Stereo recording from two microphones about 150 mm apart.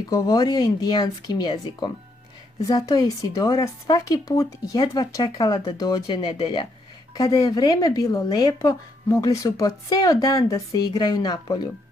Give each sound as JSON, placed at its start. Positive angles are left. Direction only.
{"t": 0.1, "sound": "speech", "side_deg": 25}